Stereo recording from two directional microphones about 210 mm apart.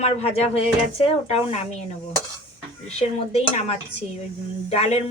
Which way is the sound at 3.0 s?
30° left (ahead or behind).